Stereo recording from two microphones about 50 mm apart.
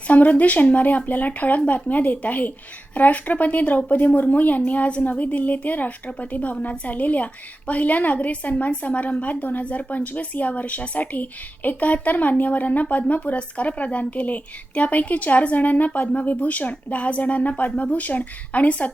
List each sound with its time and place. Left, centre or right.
0.1 s a woman's voice: left